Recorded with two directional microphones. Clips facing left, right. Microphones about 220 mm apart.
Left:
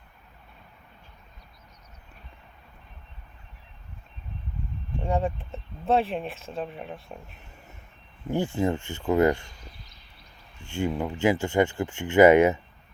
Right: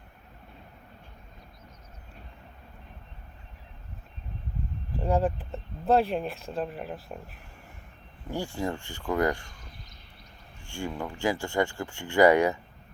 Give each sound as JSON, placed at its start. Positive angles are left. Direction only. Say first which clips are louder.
{"t": 4.9, "sound": "speech", "louder": "right 1 dB", "side_deg": 0}
{"t": 8.3, "sound": "speech", "louder": "left 6 dB", "side_deg": 20}